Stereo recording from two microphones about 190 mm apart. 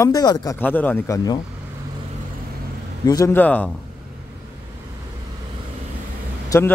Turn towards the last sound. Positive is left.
turn(degrees=15)  # may be behind; listen again after turning